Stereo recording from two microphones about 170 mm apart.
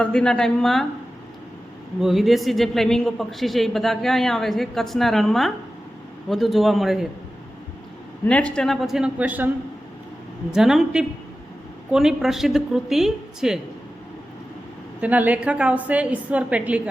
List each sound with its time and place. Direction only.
0.0 s a man's voice: 5° left (ahead or behind)
2.0 s a man's voice: centre (ahead or behind)
8.2 s a man's voice: 10° left (ahead or behind); by 9.5 s 10° right (ahead or behind)
10.5 s a man's voice: 5° right (ahead or behind)
15.0 s a woman's voice: 10° right (ahead or behind)